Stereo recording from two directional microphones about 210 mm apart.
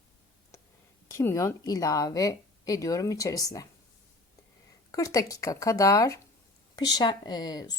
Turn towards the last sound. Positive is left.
turn(degrees=20)  # may be behind; listen again after turning